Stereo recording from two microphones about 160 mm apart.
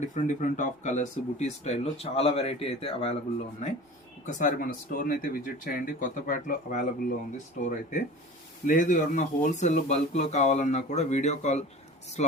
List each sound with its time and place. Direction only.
0.0 s speech: 50° left (ahead or behind)